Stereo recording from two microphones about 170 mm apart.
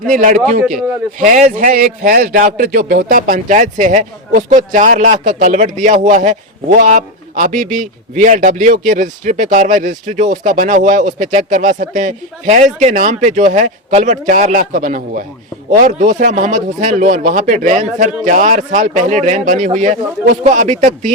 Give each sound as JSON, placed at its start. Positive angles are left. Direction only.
{"t": 0.0, "sound": "a man's voice", "side_deg": -55}